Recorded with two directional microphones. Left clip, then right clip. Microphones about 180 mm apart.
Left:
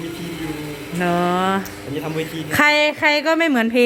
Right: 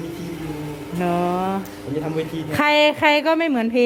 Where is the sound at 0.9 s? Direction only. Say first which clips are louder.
Left 3 dB; centre (ahead or behind).